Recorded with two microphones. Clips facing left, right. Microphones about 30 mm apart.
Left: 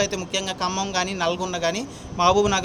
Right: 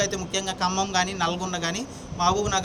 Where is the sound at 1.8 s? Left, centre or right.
Left.